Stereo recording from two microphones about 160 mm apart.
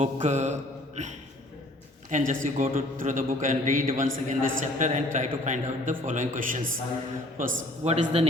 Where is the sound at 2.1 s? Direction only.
55° right (ahead or behind).